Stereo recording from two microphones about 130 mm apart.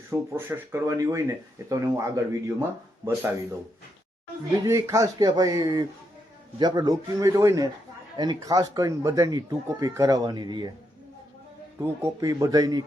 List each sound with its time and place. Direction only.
0.1 s speech: 15° right (ahead or behind)
4.5 s speech: 25° right (ahead or behind)
11.8 s speech: 20° right (ahead or behind)